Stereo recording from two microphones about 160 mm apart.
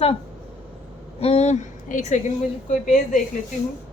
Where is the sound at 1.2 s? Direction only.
45° left (ahead or behind).